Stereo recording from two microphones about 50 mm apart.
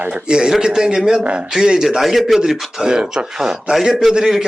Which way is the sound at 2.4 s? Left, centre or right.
Centre.